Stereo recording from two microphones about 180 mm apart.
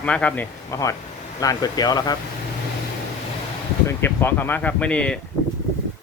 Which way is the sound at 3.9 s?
10° left (ahead or behind).